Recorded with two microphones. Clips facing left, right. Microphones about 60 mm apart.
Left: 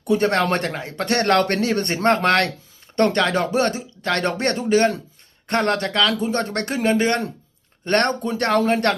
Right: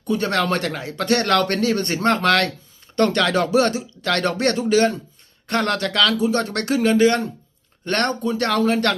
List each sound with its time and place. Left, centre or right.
0.1 s speech: left
0.7 s speech: centre
1.0 s speech: left
3.2 s speech: left
4.7 s speech: left
7.9 s speech: left
8.4 s speech: left